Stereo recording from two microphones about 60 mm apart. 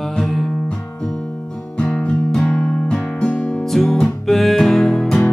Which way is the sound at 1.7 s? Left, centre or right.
Centre.